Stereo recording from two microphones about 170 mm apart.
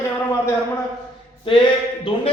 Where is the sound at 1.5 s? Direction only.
30° left (ahead or behind).